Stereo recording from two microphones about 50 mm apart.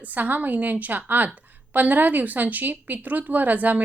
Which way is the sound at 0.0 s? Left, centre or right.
Right.